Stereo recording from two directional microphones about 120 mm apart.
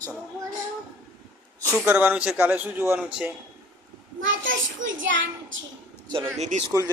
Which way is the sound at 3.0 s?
5° right (ahead or behind).